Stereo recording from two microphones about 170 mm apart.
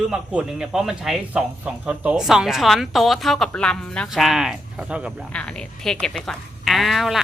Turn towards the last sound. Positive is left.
turn(degrees=0)  # may be behind; listen again after turning